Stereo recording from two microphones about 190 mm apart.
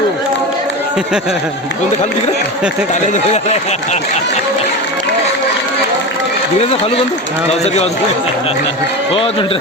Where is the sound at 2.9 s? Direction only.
40° left (ahead or behind).